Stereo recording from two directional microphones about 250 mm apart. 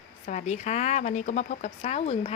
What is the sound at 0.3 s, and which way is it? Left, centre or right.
A woman's voice, left.